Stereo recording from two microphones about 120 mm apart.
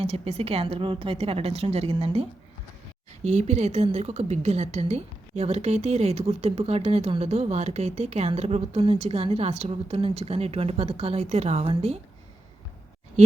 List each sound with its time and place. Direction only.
0.0 s a woman's voice: 55° right (ahead or behind)
3.2 s a woman's voice: 70° right (ahead or behind)